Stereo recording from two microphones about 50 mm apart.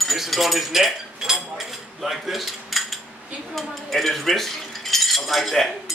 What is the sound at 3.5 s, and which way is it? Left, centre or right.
Speech, centre.